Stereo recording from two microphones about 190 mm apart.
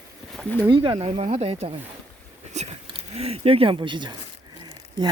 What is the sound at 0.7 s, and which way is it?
Speech, 25° right (ahead or behind).